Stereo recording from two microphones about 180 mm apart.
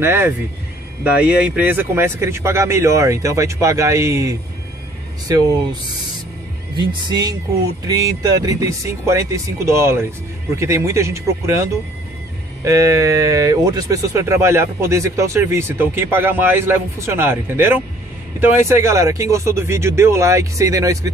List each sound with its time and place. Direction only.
0.0 s speech: 15° right (ahead or behind)
6.8 s speech: 25° right (ahead or behind)
12.6 s speech: 15° right (ahead or behind)